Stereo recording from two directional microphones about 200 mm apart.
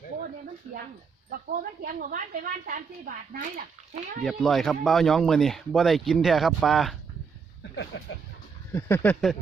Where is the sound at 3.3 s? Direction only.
45° right (ahead or behind).